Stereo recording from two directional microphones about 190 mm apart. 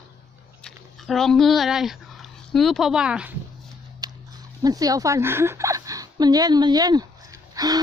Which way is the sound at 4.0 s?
20° right (ahead or behind).